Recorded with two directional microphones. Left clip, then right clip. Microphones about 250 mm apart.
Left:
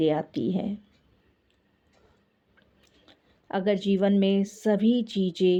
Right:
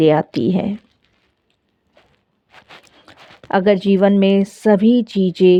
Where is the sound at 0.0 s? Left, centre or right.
Right.